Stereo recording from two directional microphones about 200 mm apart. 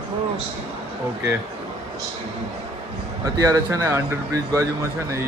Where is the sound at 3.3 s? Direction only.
15° right (ahead or behind).